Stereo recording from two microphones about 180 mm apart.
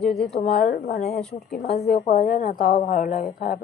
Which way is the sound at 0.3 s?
55° left (ahead or behind).